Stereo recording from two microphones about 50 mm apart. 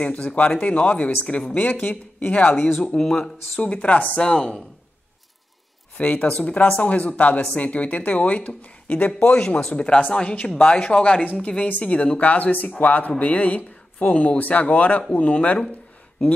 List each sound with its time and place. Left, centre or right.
0.0 s speech: left
3.0 s speech: centre
3.5 s speech: left
4.2 s speech: centre
5.9 s speech: left
9.6 s speech: centre